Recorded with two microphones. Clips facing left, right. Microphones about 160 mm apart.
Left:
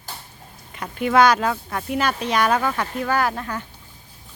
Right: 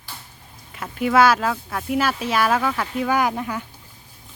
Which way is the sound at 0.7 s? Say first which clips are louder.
Even; centre (ahead or behind).